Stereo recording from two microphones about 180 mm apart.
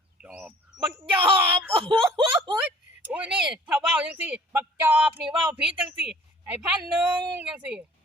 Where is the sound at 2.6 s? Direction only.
5° right (ahead or behind).